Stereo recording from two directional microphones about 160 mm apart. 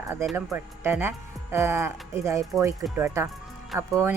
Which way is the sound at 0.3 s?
15° right (ahead or behind).